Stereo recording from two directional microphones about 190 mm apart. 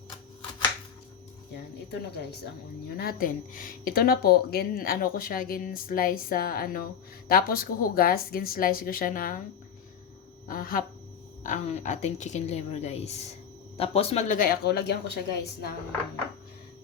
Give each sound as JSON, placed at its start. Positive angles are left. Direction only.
{"t": 1.9, "sound": "a woman's voice", "side_deg": 60}
{"t": 10.5, "sound": "speech", "side_deg": 50}
{"t": 11.4, "sound": "a woman's voice", "side_deg": 40}